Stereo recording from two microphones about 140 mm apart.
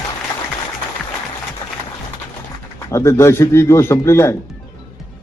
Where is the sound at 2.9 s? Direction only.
20° left (ahead or behind).